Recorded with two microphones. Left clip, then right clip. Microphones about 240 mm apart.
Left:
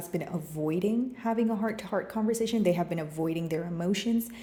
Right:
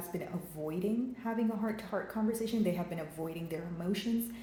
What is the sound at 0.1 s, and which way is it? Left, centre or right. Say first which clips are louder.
A woman's voice: left 8 dB; left.